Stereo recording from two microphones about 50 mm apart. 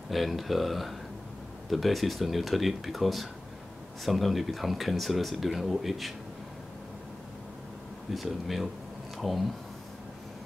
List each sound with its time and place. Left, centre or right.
0.1 s speech: centre
8.1 s speech: centre